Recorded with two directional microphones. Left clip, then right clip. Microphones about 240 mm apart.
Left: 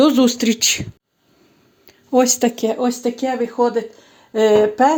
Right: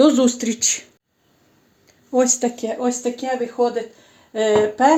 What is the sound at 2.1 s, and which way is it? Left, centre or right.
Speech, left.